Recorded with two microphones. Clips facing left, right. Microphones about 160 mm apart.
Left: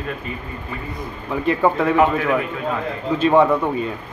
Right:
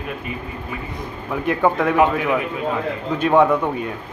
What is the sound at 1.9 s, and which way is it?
Speech, 15° right (ahead or behind).